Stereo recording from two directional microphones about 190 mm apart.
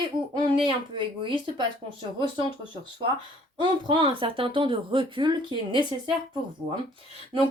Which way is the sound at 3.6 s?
25° right (ahead or behind).